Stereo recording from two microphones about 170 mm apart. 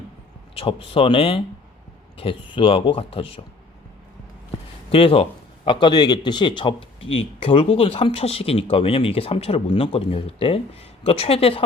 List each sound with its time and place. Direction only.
0.5 s speech: 35° left (ahead or behind)
4.9 s a man's voice: 35° left (ahead or behind)